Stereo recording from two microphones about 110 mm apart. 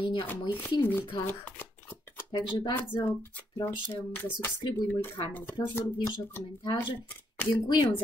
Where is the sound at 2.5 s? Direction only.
45° left (ahead or behind).